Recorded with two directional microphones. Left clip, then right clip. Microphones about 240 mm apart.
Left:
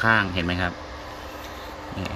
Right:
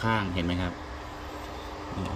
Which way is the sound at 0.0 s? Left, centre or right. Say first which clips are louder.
Left 8 dB; left.